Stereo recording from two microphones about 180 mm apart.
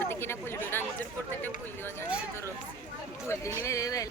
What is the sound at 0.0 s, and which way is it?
Speech, 15° left (ahead or behind).